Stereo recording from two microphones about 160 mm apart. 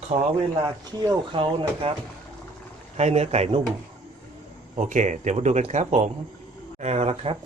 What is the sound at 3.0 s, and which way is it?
Speech, 45° right (ahead or behind).